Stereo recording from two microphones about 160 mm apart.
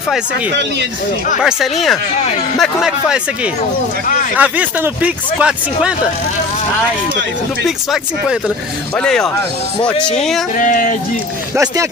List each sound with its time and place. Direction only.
1.4 s speech: centre (ahead or behind)
4.4 s speech: 10° right (ahead or behind)
7.6 s speech: centre (ahead or behind)
10.6 s speech: 55° left (ahead or behind)
11.5 s speech: 20° right (ahead or behind)